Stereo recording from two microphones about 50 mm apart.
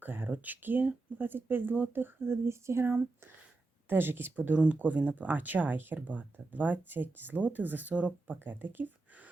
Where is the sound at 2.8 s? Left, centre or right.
Right.